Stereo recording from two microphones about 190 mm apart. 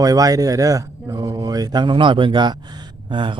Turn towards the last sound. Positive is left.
turn(degrees=-25)  # may be behind; listen again after turning